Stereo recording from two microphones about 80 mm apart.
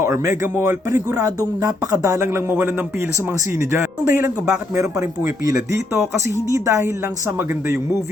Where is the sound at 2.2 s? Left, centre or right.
Right.